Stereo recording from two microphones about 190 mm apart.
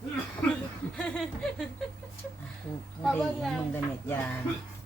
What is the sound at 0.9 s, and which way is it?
Speech, 5° left (ahead or behind).